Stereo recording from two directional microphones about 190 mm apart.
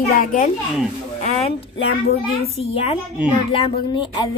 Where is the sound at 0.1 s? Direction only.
45° left (ahead or behind).